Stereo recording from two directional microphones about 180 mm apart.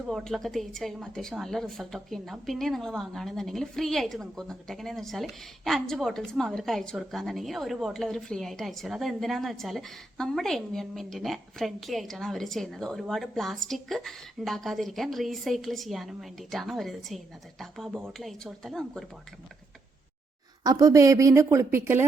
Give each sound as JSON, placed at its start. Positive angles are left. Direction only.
{"t": 0.1, "sound": "a woman's voice", "side_deg": 0}
{"t": 20.7, "sound": "speech", "side_deg": -20}